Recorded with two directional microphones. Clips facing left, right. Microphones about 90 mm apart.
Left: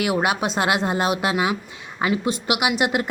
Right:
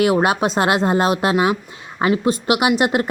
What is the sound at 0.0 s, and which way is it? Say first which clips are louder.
Speech: right 5 dB; 40° right (ahead or behind).